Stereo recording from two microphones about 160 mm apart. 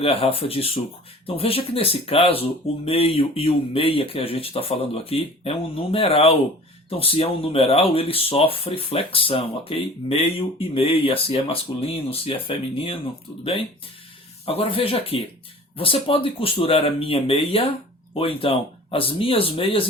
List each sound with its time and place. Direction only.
0.0 s speech: 35° left (ahead or behind)
14.4 s speech: 35° left (ahead or behind)